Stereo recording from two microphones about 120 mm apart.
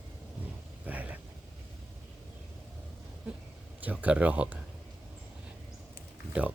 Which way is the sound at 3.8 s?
15° right (ahead or behind).